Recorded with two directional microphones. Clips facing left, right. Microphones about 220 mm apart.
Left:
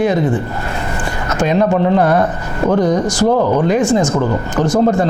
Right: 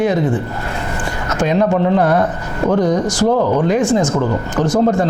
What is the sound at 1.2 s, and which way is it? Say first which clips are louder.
Speech: left 1 dB; 20° left (ahead or behind).